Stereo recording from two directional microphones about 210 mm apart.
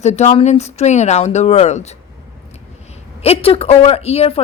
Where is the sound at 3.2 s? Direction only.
30° left (ahead or behind).